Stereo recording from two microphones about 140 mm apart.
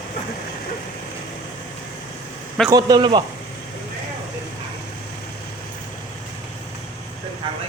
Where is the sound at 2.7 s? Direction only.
30° right (ahead or behind).